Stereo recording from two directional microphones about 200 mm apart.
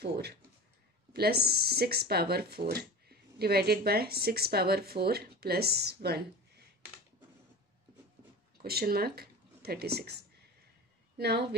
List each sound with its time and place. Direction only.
0.0 s speech: 55° right (ahead or behind)
8.6 s speech: 50° right (ahead or behind)
11.1 s a woman's voice: 55° right (ahead or behind)